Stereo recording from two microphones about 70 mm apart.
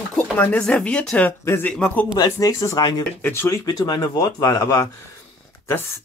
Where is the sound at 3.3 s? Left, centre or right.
Left.